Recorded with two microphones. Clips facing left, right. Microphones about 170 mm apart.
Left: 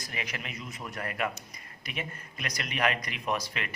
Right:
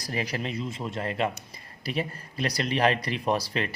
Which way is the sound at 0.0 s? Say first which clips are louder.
Right 8 dB; 35° right (ahead or behind).